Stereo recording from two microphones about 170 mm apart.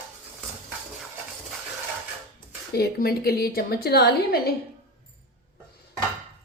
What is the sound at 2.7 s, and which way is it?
A woman's voice, 65° left (ahead or behind).